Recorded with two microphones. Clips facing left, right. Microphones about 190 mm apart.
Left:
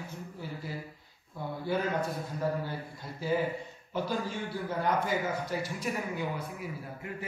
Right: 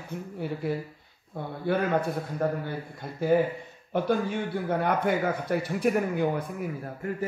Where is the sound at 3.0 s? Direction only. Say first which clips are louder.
Right 7 dB; 55° right (ahead or behind).